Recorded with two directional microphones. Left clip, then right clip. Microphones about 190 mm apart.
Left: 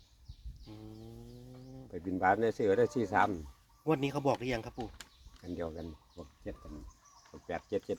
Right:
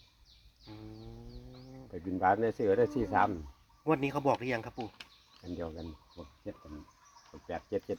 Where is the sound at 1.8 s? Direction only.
5° left (ahead or behind).